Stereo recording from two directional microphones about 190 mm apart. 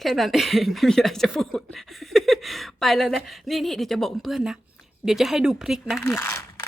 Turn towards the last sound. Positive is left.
turn(degrees=15)  # may be behind; listen again after turning